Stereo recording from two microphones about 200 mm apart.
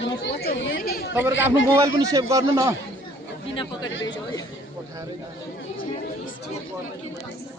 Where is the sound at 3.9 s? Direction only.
75° left (ahead or behind).